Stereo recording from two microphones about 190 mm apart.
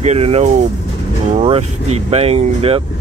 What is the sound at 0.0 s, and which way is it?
Speech, 35° right (ahead or behind).